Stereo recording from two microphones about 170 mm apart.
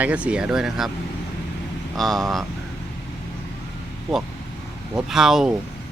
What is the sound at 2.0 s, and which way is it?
Speech, centre (ahead or behind).